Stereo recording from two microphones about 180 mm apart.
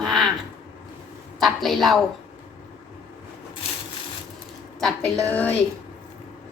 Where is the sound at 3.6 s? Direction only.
35° left (ahead or behind).